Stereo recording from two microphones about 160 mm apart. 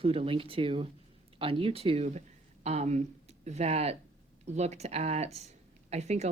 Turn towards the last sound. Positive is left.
turn(degrees=-45)  # may be behind; listen again after turning